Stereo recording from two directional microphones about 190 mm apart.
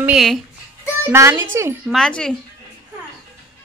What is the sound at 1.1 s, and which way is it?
Speech, 15° right (ahead or behind).